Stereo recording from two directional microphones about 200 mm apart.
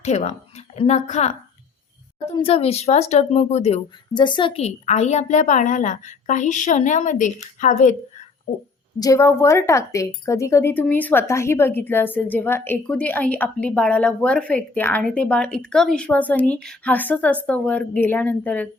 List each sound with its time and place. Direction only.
0.0 s a woman's voice: 35° left (ahead or behind)
2.4 s speech: 30° left (ahead or behind)
9.0 s speech: 15° left (ahead or behind)